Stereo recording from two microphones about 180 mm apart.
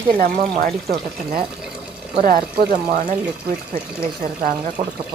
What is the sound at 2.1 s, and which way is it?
Speech, 55° right (ahead or behind).